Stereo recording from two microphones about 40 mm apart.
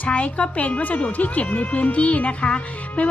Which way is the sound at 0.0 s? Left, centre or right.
Left.